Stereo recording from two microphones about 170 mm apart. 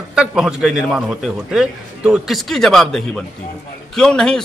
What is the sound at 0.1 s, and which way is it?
A man's voice, 5° right (ahead or behind).